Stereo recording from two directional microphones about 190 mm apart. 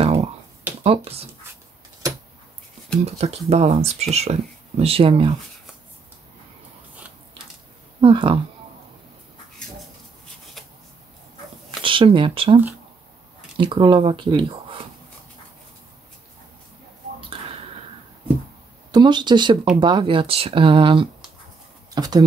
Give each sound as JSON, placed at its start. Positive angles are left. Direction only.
{"t": 0.0, "sound": "a sound", "side_deg": -30}
{"t": 0.8, "sound": "speech", "side_deg": -30}
{"t": 3.2, "sound": "speech", "side_deg": -35}
{"t": 8.0, "sound": "speech", "side_deg": -25}
{"t": 11.8, "sound": "speech", "side_deg": -25}
{"t": 13.6, "sound": "speech", "side_deg": -25}
{"t": 18.9, "sound": "speech", "side_deg": -25}